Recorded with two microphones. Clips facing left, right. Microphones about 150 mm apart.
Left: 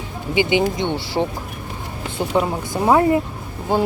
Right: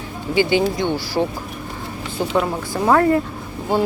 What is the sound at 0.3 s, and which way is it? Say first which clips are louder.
Speech: right 1 dB; 15° left (ahead or behind).